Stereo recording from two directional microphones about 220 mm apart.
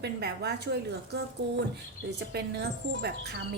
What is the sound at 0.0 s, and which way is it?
A woman's voice, 45° right (ahead or behind).